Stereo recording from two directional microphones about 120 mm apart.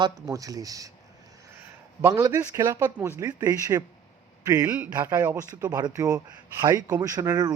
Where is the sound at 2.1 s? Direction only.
30° right (ahead or behind).